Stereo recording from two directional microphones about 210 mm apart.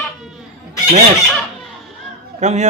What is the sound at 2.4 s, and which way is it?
Speech, 35° right (ahead or behind).